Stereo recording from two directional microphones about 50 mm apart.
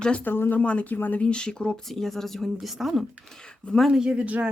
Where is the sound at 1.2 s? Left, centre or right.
Centre.